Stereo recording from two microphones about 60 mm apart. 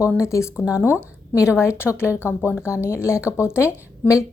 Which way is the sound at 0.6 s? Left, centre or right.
Right.